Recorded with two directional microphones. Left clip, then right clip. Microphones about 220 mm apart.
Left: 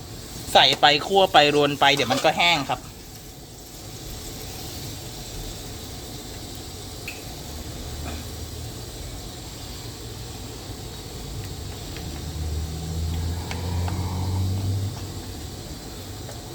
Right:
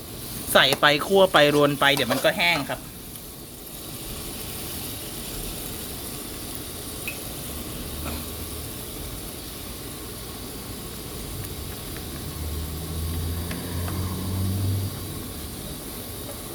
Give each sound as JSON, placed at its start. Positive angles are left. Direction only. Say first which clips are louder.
{"t": 0.5, "sound": "speech", "louder": "left 2 dB", "side_deg": -30}